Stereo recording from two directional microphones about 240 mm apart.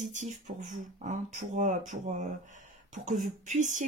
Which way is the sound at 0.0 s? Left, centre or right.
Right.